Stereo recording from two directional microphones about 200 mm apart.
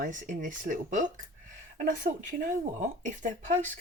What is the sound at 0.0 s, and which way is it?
Speech, 40° right (ahead or behind).